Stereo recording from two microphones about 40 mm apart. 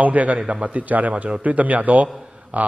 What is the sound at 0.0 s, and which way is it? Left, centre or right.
A man's voice, right.